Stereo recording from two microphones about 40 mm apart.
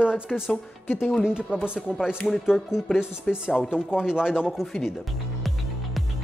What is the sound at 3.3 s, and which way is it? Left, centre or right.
Speech, centre.